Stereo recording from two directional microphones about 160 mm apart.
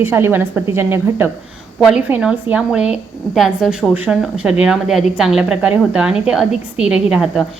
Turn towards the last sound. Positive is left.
turn(degrees=-5)  # may be behind; listen again after turning